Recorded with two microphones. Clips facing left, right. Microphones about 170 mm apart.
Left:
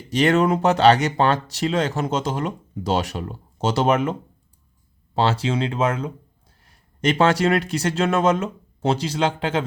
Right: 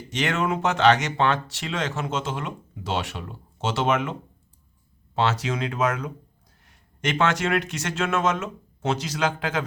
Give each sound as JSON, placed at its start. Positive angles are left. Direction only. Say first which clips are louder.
{"t": 0.1, "sound": "speech", "louder": "left 7 dB", "side_deg": 35}